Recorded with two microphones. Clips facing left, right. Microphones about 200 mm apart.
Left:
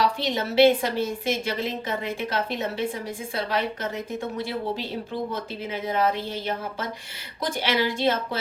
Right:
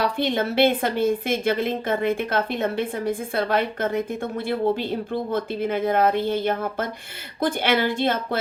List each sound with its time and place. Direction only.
0.0 s a woman's voice: 55° right (ahead or behind)